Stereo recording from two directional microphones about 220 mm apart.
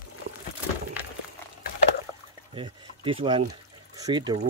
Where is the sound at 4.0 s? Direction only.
20° right (ahead or behind).